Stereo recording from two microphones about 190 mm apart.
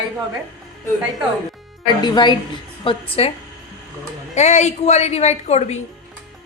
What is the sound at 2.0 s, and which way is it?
A woman's voice, 25° left (ahead or behind).